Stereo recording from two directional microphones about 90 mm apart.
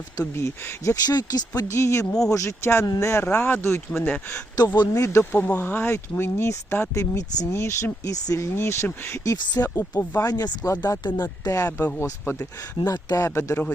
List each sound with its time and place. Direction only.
0.2 s speech: 35° left (ahead or behind)
1.0 s speech: 50° left (ahead or behind)
1.7 s speech: 30° left (ahead or behind)
3.2 s speech: 15° left (ahead or behind)
3.9 s speech: 5° left (ahead or behind)
4.6 s speech: 45° left (ahead or behind)
4.9 s speech: 30° left (ahead or behind)
5.3 s speech: 20° left (ahead or behind); by 8.4 s 40° left (ahead or behind)
8.5 s speech: 30° left (ahead or behind)
12.8 s speech: 45° left (ahead or behind)